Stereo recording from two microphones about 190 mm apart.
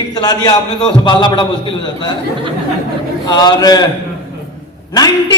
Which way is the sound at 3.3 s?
20° left (ahead or behind).